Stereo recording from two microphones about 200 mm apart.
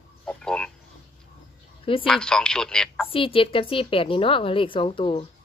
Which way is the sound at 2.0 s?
5° left (ahead or behind).